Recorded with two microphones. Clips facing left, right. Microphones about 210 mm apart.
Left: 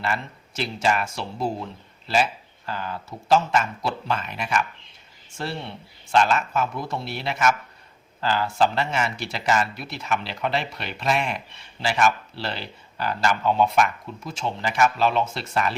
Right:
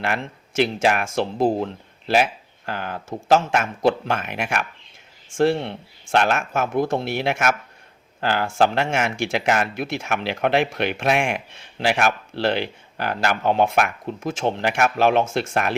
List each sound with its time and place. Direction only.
0.0 s speech: 75° right (ahead or behind)
0.6 s speech: 55° right (ahead or behind)
5.4 s speech: 50° right (ahead or behind)
15.2 s speech: 50° right (ahead or behind)